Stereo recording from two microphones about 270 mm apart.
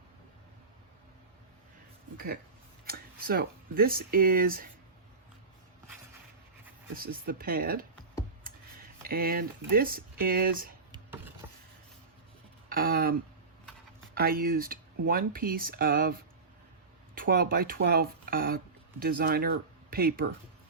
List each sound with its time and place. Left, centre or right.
2.8 s speech: right
6.9 s speech: right
9.0 s speech: right
10.9 s a sound: centre
12.6 s a sound: right
14.1 s speech: right